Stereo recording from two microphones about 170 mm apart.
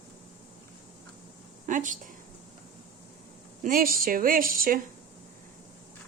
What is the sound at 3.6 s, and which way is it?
Speech, 55° right (ahead or behind).